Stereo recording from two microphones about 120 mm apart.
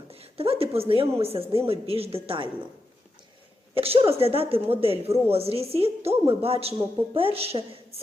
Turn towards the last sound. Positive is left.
turn(degrees=-55)  # may be behind; listen again after turning